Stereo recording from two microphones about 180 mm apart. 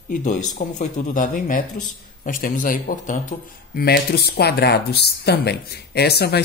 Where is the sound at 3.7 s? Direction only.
60° left (ahead or behind).